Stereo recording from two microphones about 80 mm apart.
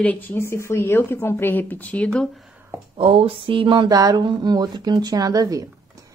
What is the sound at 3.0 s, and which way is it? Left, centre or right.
Speech, right.